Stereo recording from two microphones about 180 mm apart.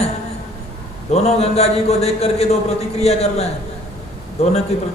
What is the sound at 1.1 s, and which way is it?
A man's voice, 35° left (ahead or behind).